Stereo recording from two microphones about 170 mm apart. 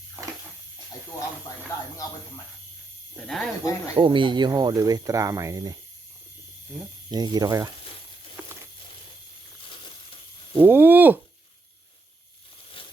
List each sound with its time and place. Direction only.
3.2 s speech: centre (ahead or behind)
3.6 s speech: 20° left (ahead or behind)
3.9 s speech: 30° right (ahead or behind)
6.7 s speech: centre (ahead or behind)
7.1 s speech: 25° right (ahead or behind)
8.4 s a sound: 10° right (ahead or behind)
10.6 s a sound: 10° right (ahead or behind)